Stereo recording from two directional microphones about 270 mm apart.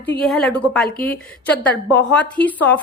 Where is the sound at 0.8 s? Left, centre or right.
Left.